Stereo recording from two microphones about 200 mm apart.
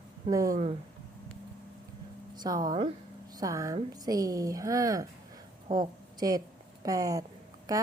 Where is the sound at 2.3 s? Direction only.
20° right (ahead or behind).